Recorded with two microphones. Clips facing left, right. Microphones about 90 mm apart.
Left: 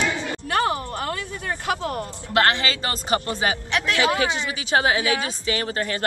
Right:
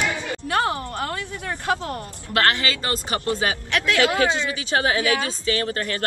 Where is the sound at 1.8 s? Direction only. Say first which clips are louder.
Left 3 dB; 25° left (ahead or behind).